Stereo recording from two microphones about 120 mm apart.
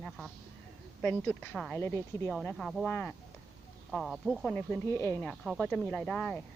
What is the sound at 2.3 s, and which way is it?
Speech, centre (ahead or behind).